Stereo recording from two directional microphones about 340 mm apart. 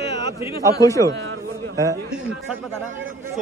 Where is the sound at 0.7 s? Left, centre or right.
Centre.